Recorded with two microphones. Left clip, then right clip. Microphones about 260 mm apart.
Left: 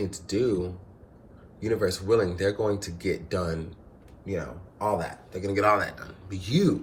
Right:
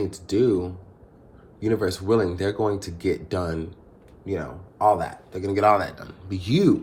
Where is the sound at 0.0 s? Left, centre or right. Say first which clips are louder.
Right 5 dB; right.